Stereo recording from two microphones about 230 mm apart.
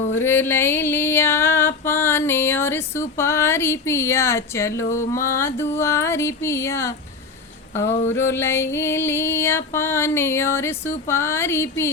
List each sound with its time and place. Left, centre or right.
0.2 s music: centre